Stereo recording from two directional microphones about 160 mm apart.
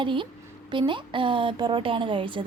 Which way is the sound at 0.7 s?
30° right (ahead or behind).